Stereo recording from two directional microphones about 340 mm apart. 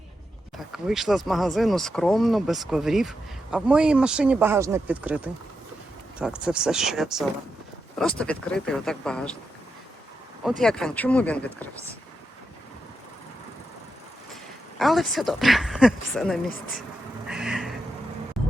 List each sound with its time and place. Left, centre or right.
0.5 s speech: centre
10.6 s speech: centre
14.8 s speech: centre
17.2 s a sound: centre